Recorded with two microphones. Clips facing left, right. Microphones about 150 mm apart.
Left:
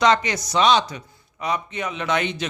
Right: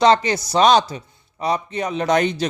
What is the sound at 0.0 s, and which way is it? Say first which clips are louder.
A man's voice: right 4 dB; 30° right (ahead or behind).